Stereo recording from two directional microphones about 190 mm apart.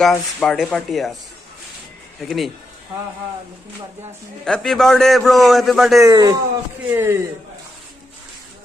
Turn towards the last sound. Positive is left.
turn(degrees=-10)  # may be behind; listen again after turning